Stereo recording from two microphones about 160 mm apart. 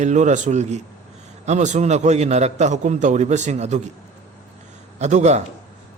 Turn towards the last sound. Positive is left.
turn(degrees=-45)  # may be behind; listen again after turning